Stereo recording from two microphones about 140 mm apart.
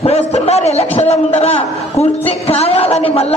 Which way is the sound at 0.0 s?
50° left (ahead or behind).